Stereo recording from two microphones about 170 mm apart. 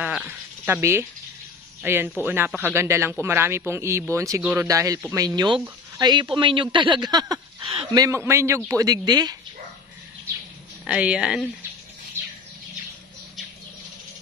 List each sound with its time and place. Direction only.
0.0 s a sound: 10° right (ahead or behind)
1.8 s a man's voice: 10° right (ahead or behind)
4.6 s a woman's voice: 20° right (ahead or behind)
10.9 s a woman's voice: 5° right (ahead or behind)